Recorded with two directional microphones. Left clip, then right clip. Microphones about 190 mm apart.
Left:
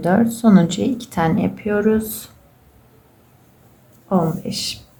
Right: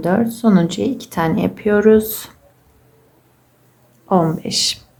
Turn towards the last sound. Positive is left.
turn(degrees=-20)  # may be behind; listen again after turning